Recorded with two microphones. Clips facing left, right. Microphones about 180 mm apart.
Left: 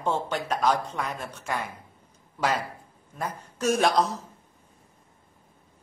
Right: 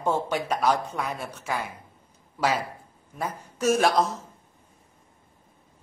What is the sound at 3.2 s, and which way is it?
Speech, 10° right (ahead or behind).